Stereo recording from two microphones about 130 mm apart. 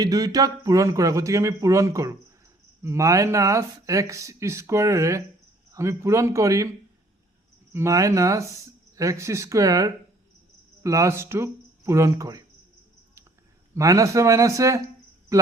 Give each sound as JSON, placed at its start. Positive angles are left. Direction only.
{"t": 0.0, "sound": "speech", "side_deg": -30}
{"t": 7.7, "sound": "speech", "side_deg": -20}
{"t": 13.7, "sound": "speech", "side_deg": -25}